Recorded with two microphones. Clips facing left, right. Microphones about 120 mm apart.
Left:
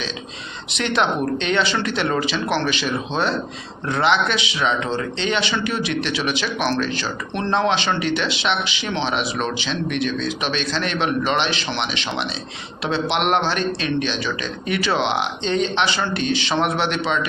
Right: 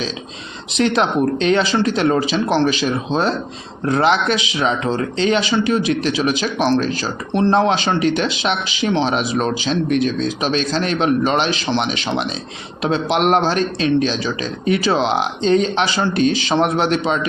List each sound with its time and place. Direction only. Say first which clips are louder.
0.8 s speech: right 4 dB; 35° right (ahead or behind)